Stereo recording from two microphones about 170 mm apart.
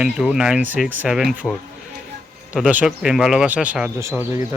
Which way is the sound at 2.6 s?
5° right (ahead or behind).